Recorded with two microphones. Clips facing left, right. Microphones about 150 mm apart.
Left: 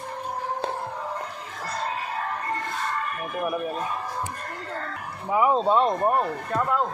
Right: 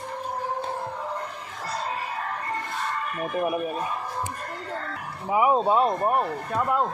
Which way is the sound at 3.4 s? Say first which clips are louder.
Left 1 dB; 10° right (ahead or behind).